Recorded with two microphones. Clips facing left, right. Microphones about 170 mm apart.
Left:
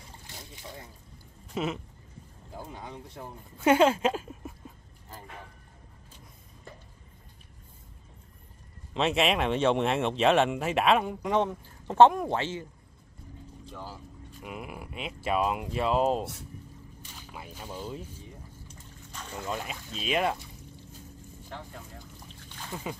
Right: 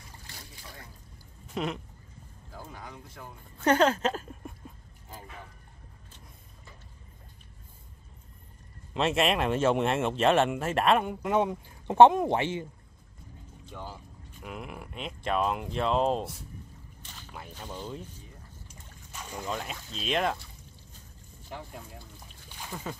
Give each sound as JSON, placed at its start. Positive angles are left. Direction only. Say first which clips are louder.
{"t": 0.3, "sound": "trickle", "louder": "left 5 dB", "side_deg": 20}
{"t": 1.5, "sound": "speech", "louder": "left 1 dB", "side_deg": 5}
{"t": 2.5, "sound": "speech", "louder": "left 3 dB", "side_deg": 25}
{"t": 3.5, "sound": "speech", "louder": "left 2 dB", "side_deg": 10}
{"t": 8.9, "sound": "speech", "louder": "even", "side_deg": 0}
{"t": 13.7, "sound": "speech", "louder": "right 1 dB", "side_deg": 0}
{"t": 18.7, "sound": "boat", "louder": "left 2 dB", "side_deg": -10}
{"t": 19.3, "sound": "speech", "louder": "even", "side_deg": 5}
{"t": 21.5, "sound": "speech", "louder": "right 2 dB", "side_deg": -10}
{"t": 22.7, "sound": "speech", "louder": "left 2 dB", "side_deg": 10}